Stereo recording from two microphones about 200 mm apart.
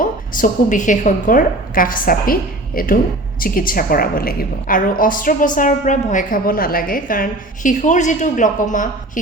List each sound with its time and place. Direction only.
0.0 s a woman's voice: 45° left (ahead or behind)